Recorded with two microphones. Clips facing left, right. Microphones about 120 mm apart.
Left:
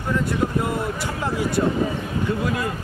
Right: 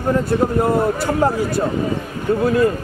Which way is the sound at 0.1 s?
40° right (ahead or behind).